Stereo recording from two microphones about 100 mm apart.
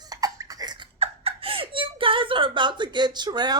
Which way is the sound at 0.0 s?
35° right (ahead or behind).